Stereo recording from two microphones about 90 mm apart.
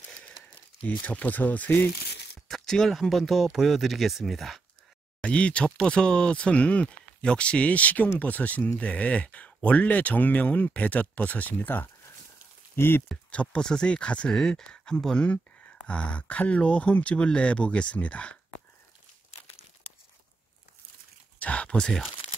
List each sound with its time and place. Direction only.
0.8 s speech: 15° left (ahead or behind)
2.4 s speech: 5° left (ahead or behind)
5.2 s speech: 15° left (ahead or behind)
13.1 s speech: 15° left (ahead or behind)
21.4 s a sound: 15° left (ahead or behind)